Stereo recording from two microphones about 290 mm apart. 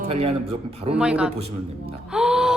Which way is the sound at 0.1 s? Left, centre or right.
Centre.